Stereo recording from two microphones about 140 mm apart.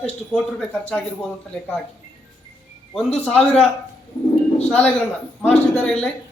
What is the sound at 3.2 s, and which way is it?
Speech, 5° left (ahead or behind).